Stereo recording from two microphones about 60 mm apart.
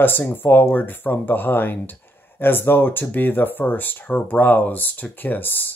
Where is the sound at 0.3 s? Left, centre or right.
Left.